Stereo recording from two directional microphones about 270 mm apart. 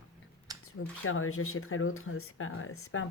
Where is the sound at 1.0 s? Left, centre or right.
Left.